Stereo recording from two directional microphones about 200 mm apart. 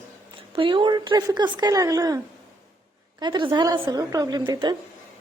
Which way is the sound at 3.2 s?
20° right (ahead or behind).